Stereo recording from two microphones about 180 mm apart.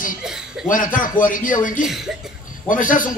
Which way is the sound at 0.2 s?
5° right (ahead or behind).